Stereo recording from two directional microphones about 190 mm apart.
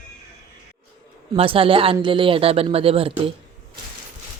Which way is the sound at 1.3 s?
30° right (ahead or behind).